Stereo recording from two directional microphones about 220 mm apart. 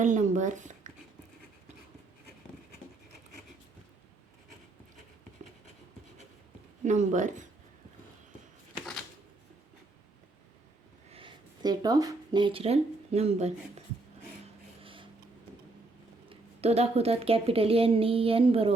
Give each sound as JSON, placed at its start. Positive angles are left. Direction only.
{"t": 0.0, "sound": "speech", "side_deg": -35}
{"t": 6.8, "sound": "speech", "side_deg": -35}
{"t": 11.1, "sound": "speech", "side_deg": -25}
{"t": 14.8, "sound": "a sound", "side_deg": -25}
{"t": 16.3, "sound": "a woman's voice", "side_deg": -30}